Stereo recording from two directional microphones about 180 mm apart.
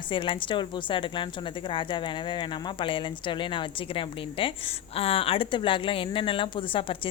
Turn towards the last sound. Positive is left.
turn(degrees=30)  # may be behind; listen again after turning